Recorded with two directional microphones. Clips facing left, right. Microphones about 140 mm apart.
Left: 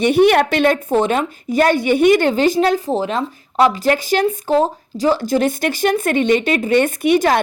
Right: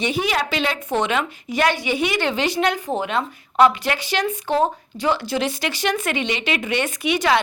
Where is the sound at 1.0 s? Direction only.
45° left (ahead or behind).